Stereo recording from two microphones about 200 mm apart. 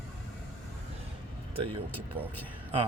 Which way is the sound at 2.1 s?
25° right (ahead or behind).